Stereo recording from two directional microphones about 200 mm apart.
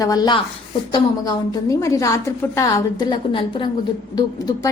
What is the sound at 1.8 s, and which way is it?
A woman's voice, 15° left (ahead or behind).